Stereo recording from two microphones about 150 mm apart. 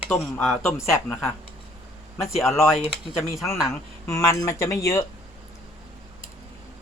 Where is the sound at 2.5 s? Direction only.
20° left (ahead or behind).